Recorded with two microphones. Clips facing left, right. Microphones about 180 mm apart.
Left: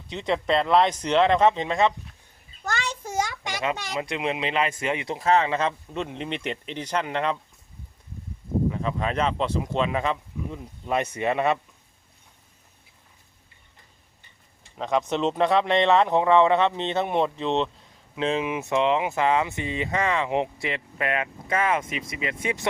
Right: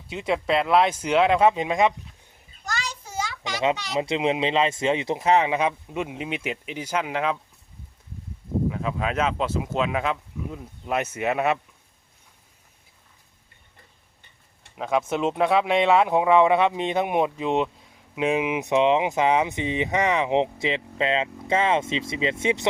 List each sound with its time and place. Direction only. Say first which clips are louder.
0.1 s speech: even; 5° right (ahead or behind)
2.6 s a sound: left 3 dB; 55° left (ahead or behind)
3.9 s speech: right 4 dB; 25° right (ahead or behind); by 7.3 s 5° right (ahead or behind)
8.7 s speech: even; 5° right (ahead or behind)
14.8 s speech: even; 5° right (ahead or behind); by 22.6 s 25° right (ahead or behind)